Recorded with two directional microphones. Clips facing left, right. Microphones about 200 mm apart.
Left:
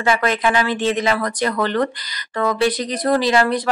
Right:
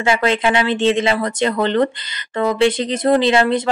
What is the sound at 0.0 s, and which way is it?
Speech, 25° right (ahead or behind).